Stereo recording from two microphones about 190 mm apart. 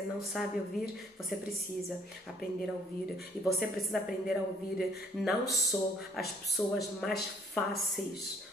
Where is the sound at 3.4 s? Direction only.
Centre (ahead or behind).